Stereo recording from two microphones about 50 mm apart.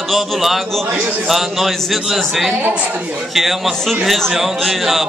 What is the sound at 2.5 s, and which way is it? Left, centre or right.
Speech, right.